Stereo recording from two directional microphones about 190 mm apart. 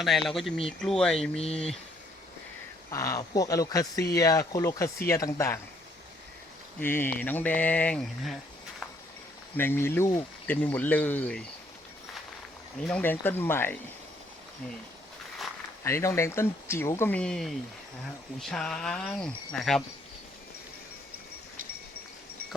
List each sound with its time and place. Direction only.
0.0 s speech: centre (ahead or behind)
2.9 s speech: 15° left (ahead or behind)
6.7 s speech: 10° left (ahead or behind)
9.6 s speech: 10° left (ahead or behind)
12.9 s speech: 10° left (ahead or behind)
15.8 s speech: 15° left (ahead or behind)